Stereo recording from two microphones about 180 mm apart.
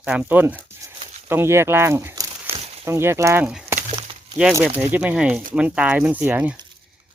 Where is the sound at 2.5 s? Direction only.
35° right (ahead or behind).